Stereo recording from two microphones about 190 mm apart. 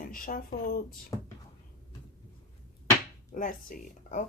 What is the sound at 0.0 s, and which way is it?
Speech, 45° left (ahead or behind).